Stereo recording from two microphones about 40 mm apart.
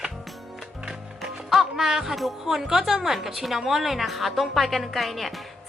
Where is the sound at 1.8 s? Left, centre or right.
Centre.